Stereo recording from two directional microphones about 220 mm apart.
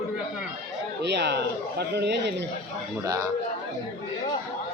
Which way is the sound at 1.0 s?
50° right (ahead or behind).